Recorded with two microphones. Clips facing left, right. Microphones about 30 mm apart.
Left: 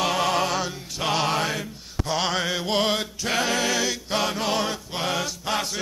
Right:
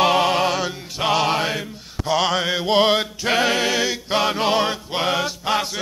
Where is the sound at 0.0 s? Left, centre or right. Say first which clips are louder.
Right 6 dB; right.